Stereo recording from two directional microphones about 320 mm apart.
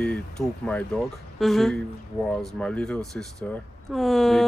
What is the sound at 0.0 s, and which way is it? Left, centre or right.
Speech, centre.